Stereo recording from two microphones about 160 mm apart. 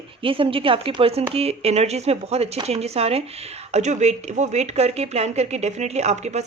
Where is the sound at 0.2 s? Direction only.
35° right (ahead or behind).